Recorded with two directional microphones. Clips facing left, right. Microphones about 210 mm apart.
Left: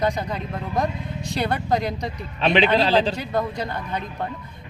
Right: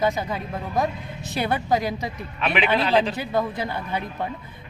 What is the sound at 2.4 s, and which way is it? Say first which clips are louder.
Speech: left 5 dB; 30° left (ahead or behind).